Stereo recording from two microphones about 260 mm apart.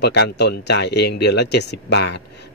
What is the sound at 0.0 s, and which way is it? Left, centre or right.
Speech, left.